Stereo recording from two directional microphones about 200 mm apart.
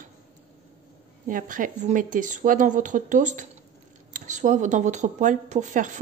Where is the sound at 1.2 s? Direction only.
45° right (ahead or behind).